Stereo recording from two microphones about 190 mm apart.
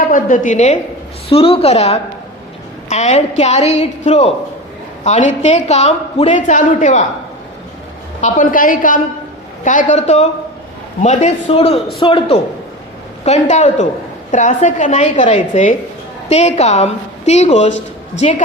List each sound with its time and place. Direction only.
0.1 s a woman's voice: 40° left (ahead or behind)
8.2 s a woman's voice: 45° left (ahead or behind)